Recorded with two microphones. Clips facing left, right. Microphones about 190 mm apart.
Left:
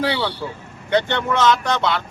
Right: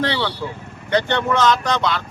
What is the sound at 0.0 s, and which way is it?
Speech, 5° left (ahead or behind).